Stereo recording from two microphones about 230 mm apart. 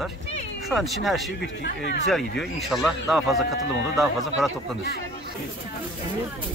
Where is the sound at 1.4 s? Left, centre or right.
Left.